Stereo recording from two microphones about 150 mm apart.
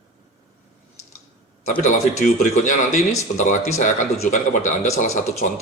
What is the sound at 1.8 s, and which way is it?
Speech, 55° left (ahead or behind).